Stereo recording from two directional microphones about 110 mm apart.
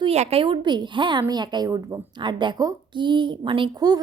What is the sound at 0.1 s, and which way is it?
A woman's voice, 70° right (ahead or behind).